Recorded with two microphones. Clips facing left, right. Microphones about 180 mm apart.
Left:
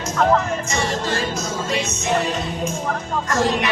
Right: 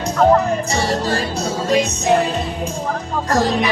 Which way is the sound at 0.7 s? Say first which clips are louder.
Right 3 dB; 35° right (ahead or behind).